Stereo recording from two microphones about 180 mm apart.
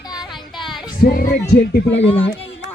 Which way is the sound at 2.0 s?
30° left (ahead or behind).